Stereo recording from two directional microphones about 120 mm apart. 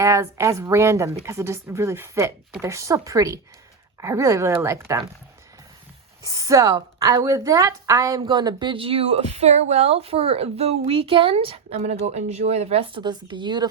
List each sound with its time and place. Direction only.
0.0 s a woman's voice: 25° right (ahead or behind)
6.2 s a woman's voice: 30° right (ahead or behind)
8.2 s speech: 40° right (ahead or behind)